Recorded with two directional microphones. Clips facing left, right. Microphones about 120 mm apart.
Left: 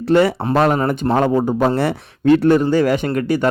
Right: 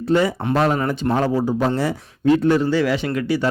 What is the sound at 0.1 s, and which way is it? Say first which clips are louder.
Speech: left 4 dB; 65° left (ahead or behind).